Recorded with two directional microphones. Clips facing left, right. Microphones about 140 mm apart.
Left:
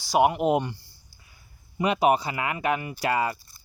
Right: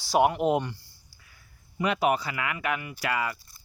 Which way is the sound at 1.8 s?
20° left (ahead or behind).